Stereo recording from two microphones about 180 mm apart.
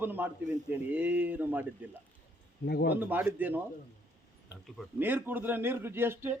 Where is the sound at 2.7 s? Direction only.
60° left (ahead or behind).